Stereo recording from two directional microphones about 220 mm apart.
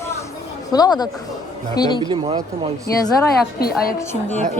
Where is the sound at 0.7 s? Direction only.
20° left (ahead or behind).